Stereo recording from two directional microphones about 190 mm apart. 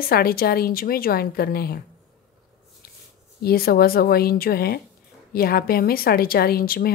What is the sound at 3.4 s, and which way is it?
Speech, 55° left (ahead or behind).